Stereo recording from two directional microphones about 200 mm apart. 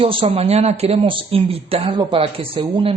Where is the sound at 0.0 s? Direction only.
25° right (ahead or behind).